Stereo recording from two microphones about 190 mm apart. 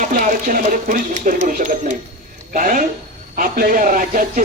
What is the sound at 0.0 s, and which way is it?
Speech, 45° right (ahead or behind).